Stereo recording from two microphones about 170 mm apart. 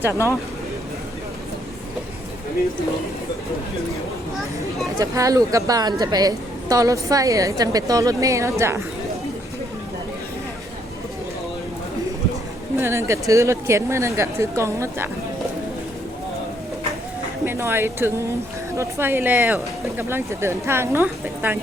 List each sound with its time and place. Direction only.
4.9 s a woman's voice: 20° right (ahead or behind)
12.8 s speech: 15° right (ahead or behind)
17.4 s speech: 15° right (ahead or behind)